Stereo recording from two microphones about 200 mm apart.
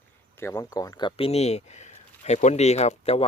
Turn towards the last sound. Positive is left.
turn(degrees=30)  # may be behind; listen again after turning